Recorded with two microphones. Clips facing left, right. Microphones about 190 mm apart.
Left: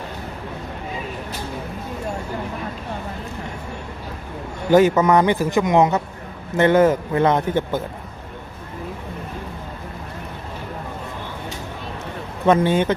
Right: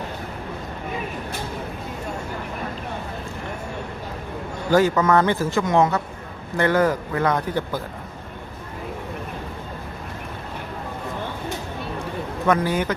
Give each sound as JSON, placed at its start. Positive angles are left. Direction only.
{"t": 4.7, "sound": "speech", "side_deg": 20}
{"t": 12.5, "sound": "speech", "side_deg": 25}